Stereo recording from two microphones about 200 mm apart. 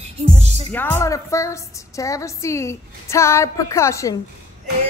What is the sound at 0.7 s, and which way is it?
A woman's voice, 10° left (ahead or behind).